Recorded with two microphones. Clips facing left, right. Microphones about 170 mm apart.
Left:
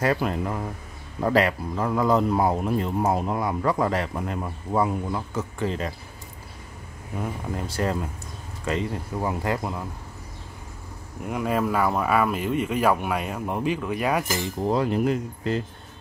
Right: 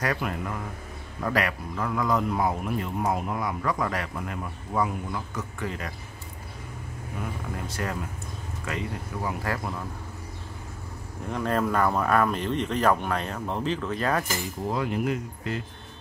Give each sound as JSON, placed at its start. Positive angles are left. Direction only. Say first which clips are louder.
{"t": 0.0, "sound": "speech", "louder": "left 5 dB", "side_deg": 30}
{"t": 7.5, "sound": "speech", "louder": "left 7 dB", "side_deg": 30}
{"t": 11.2, "sound": "speech", "louder": "left 2 dB", "side_deg": 10}
{"t": 14.6, "sound": "speech", "louder": "left 5 dB", "side_deg": 35}